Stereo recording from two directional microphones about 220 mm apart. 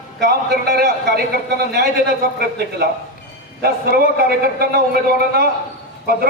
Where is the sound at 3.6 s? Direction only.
45° right (ahead or behind).